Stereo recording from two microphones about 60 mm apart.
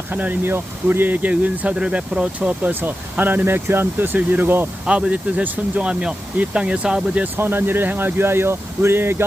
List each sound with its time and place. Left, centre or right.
0.1 s speech: right
2.6 s speech: right
4.9 s speech: centre
7.3 s speech: right